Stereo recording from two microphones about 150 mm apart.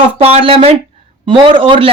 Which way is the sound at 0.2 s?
40° right (ahead or behind).